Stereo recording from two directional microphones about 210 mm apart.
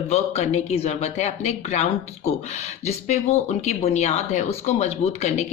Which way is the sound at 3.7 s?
30° left (ahead or behind).